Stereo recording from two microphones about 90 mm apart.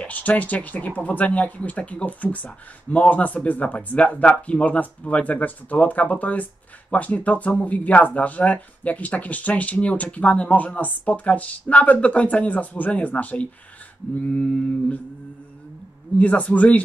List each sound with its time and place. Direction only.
0.0 s speech: 15° left (ahead or behind)
16.2 s speech: 15° left (ahead or behind)